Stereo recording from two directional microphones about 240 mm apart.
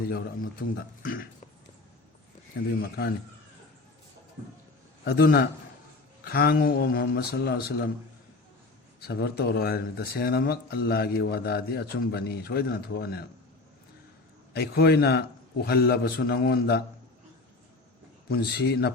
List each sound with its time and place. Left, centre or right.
0.0 s speech: left
2.8 s speech: left
5.0 s speech: left
9.0 s speech: left
14.5 s speech: left
18.3 s speech: left